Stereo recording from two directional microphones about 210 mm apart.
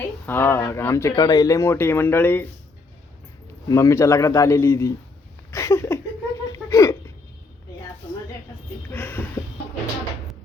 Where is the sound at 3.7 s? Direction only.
15° left (ahead or behind).